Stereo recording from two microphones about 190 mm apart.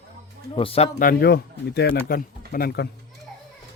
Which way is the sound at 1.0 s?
55° left (ahead or behind).